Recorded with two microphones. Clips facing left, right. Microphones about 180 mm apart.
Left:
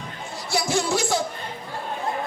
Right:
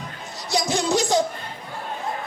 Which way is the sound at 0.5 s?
20° right (ahead or behind).